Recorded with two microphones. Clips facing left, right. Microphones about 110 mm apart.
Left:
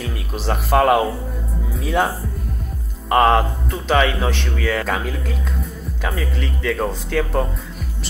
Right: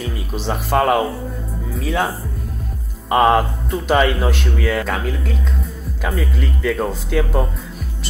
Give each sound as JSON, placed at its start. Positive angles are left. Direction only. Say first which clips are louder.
{"t": 0.0, "sound": "speech", "louder": "right 1 dB", "side_deg": 0}
{"t": 3.1, "sound": "speech", "louder": "right 1 dB", "side_deg": -5}